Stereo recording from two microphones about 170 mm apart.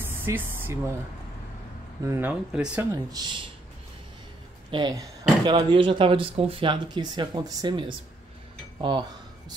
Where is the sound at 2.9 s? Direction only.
25° right (ahead or behind).